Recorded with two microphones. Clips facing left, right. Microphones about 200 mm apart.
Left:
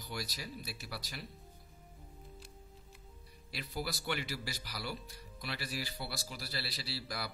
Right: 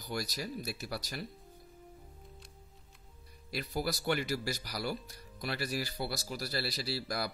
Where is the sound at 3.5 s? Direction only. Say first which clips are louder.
Right 5 dB; 45° right (ahead or behind).